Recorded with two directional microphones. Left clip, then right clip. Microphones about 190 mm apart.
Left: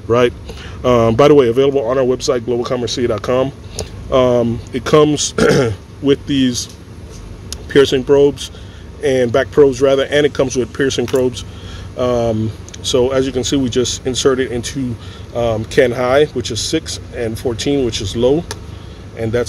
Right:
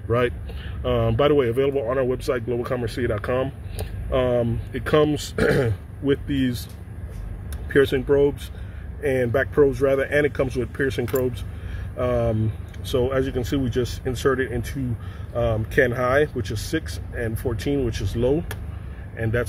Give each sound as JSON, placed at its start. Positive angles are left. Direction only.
{"t": 0.1, "sound": "speech", "side_deg": 35}
{"t": 7.7, "sound": "speech", "side_deg": 15}
{"t": 9.0, "sound": "speech", "side_deg": 25}